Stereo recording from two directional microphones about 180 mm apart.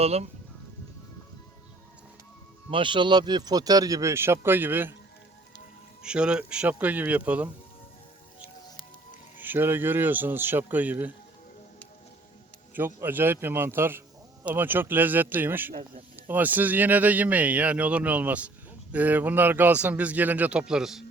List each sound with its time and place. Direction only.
0.0 s speech: 35° right (ahead or behind)
2.6 s speech: 30° right (ahead or behind); by 4.9 s 10° right (ahead or behind)
6.0 s speech: 5° right (ahead or behind)
9.4 s speech: 10° right (ahead or behind)
12.7 s speech: 10° right (ahead or behind)